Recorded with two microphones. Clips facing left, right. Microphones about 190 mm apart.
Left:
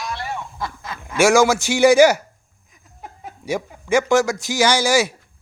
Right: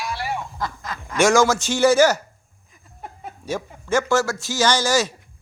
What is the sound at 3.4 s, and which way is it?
A man's voice, 10° left (ahead or behind).